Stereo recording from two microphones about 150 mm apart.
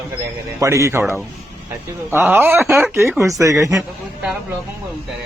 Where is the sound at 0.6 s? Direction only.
20° right (ahead or behind).